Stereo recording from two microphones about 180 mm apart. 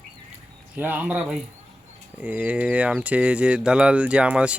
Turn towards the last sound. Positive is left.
turn(degrees=-5)  # may be behind; listen again after turning